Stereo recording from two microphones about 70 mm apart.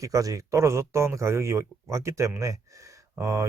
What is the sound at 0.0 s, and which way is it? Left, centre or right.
Speech, right.